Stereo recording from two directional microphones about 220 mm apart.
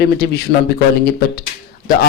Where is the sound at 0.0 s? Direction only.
45° left (ahead or behind).